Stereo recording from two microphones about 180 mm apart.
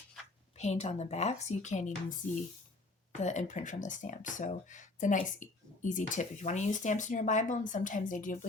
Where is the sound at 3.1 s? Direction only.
40° left (ahead or behind).